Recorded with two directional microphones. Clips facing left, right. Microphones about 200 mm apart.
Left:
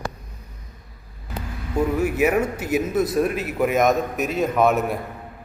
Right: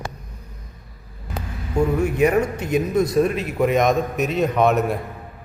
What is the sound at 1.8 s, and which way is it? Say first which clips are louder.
A man's voice: right 2 dB; 5° left (ahead or behind).